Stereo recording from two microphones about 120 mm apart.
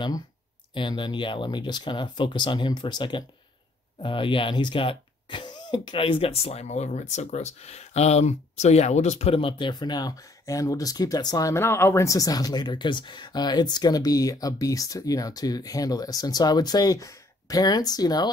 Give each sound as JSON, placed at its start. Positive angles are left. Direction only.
{"t": 0.7, "sound": "speech", "side_deg": 40}